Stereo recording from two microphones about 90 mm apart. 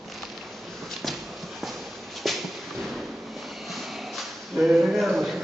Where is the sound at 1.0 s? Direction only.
5° left (ahead or behind).